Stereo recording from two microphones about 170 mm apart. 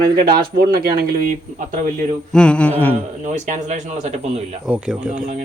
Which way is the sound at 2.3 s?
5° left (ahead or behind).